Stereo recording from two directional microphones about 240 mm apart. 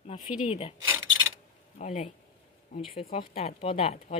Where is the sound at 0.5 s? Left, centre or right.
Left.